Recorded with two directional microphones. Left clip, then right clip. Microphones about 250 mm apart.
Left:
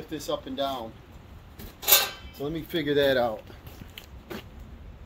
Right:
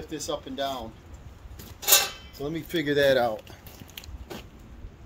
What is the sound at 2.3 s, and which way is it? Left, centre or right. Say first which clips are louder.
Speech: right 1 dB; centre.